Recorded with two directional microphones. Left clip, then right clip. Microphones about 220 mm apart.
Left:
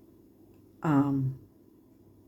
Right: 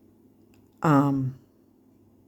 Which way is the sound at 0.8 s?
50° right (ahead or behind).